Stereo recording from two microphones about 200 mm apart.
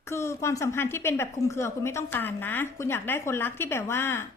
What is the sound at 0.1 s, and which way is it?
A woman's voice, 15° left (ahead or behind).